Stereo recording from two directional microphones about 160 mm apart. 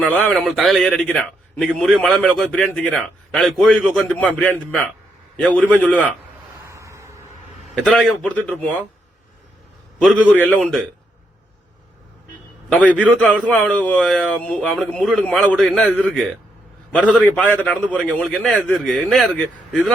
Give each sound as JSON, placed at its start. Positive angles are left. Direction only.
{"t": 0.0, "sound": "a man's voice", "side_deg": 5}
{"t": 6.7, "sound": "vehicle", "side_deg": -20}
{"t": 7.9, "sound": "a man's voice", "side_deg": 5}
{"t": 10.0, "sound": "a man's voice", "side_deg": 5}
{"t": 12.7, "sound": "a man's voice", "side_deg": 10}